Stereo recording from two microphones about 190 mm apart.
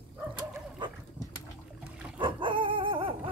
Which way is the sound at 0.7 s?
25° right (ahead or behind).